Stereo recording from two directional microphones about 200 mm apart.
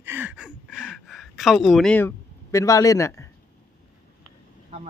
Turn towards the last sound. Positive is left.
turn(degrees=15)  # may be behind; listen again after turning